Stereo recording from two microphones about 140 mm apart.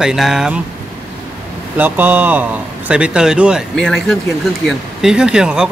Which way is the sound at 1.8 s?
15° right (ahead or behind).